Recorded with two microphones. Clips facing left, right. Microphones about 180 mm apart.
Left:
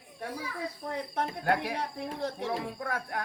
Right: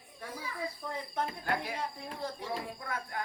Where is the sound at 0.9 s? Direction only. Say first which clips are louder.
Left 5 dB; 70° left (ahead or behind).